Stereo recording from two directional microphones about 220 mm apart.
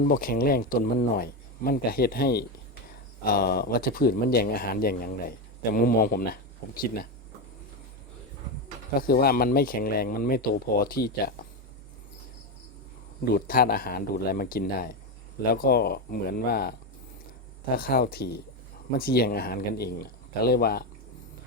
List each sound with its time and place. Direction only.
0.1 s speech: 40° left (ahead or behind)
9.0 s speech: 45° left (ahead or behind)
13.2 s speech: 45° left (ahead or behind)
17.7 s speech: 45° left (ahead or behind)